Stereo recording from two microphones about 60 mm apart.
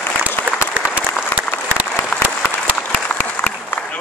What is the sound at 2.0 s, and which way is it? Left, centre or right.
Applause, left.